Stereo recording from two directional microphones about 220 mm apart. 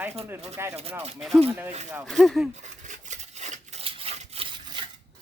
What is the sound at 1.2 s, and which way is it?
Speech, centre (ahead or behind).